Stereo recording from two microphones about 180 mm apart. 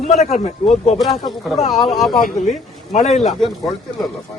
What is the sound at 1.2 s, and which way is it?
Speech, centre (ahead or behind).